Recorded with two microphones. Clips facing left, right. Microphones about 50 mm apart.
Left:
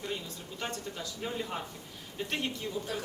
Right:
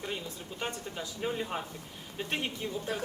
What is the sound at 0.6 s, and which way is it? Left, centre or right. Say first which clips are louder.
Speech: right 1 dB; centre.